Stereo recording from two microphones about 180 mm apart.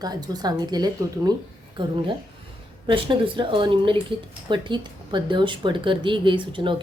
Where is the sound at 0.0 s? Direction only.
20° right (ahead or behind).